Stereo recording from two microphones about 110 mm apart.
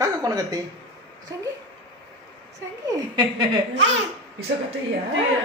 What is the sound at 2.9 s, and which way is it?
Speech, 40° right (ahead or behind).